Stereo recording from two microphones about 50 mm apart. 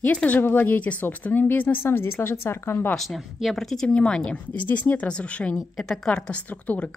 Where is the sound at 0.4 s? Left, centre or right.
Left.